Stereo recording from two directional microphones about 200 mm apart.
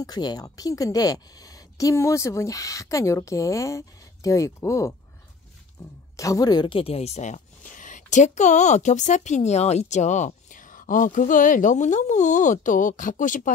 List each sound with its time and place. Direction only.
0.0 s a woman's voice: 20° left (ahead or behind); by 13.5 s 40° left (ahead or behind)